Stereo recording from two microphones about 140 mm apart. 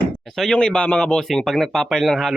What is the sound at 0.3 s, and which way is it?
Speech, centre (ahead or behind).